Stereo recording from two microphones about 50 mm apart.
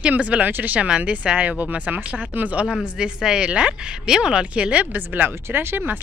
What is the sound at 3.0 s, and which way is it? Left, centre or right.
Speech, centre.